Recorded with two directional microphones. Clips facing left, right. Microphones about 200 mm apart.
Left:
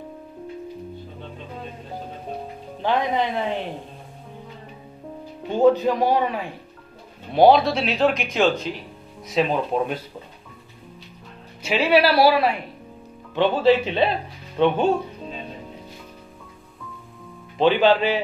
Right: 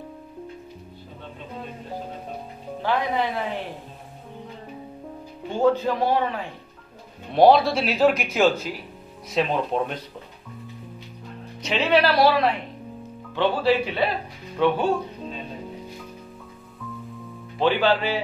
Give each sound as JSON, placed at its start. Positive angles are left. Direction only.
{"t": 2.8, "sound": "speech", "side_deg": 20}
{"t": 5.6, "sound": "a woman's voice", "side_deg": 15}
{"t": 7.3, "sound": "speech", "side_deg": 0}
{"t": 11.6, "sound": "a woman's voice", "side_deg": 10}
{"t": 13.3, "sound": "speech", "side_deg": 20}
{"t": 17.6, "sound": "speech", "side_deg": 20}